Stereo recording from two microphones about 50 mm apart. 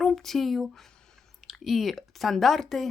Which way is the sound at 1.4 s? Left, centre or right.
Centre.